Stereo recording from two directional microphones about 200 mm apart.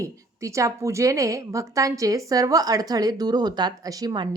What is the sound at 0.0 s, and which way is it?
A woman's voice, 15° right (ahead or behind).